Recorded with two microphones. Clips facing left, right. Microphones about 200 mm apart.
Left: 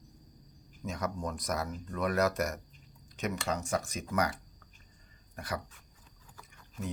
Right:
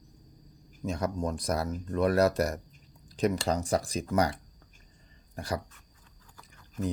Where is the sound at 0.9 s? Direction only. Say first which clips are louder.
Right 5 dB; 30° right (ahead or behind).